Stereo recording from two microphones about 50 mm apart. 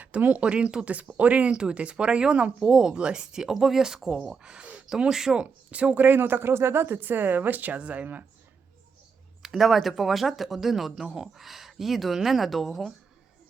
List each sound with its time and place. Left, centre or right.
0.0 s speech: right
4.9 s speech: centre
5.4 s speech: right
6.0 s speech: right
9.4 s speech: centre